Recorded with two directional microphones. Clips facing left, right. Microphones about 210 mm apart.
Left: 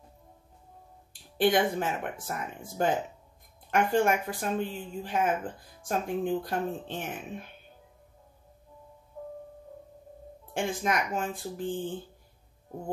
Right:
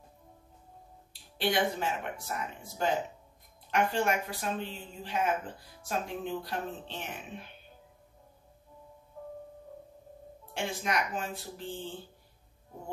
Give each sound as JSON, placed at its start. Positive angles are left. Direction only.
{"t": 1.4, "sound": "speech", "side_deg": 50}
{"t": 10.5, "sound": "speech", "side_deg": 50}